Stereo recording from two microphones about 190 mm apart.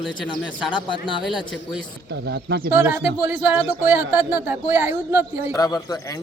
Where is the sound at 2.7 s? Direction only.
10° right (ahead or behind).